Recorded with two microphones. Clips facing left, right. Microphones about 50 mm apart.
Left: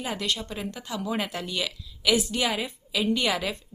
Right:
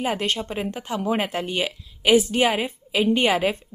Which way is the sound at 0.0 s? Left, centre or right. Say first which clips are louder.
Right 6 dB; right.